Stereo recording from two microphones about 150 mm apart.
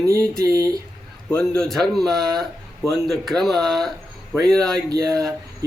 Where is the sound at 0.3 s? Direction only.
25° right (ahead or behind).